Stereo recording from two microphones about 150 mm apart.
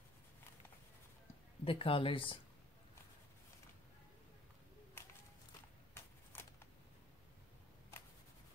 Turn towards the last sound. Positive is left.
turn(degrees=15)  # may be behind; listen again after turning